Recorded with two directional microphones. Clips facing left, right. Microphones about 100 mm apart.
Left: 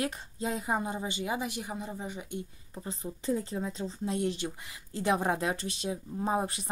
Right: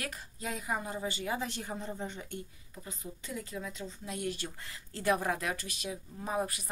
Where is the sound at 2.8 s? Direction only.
30° left (ahead or behind).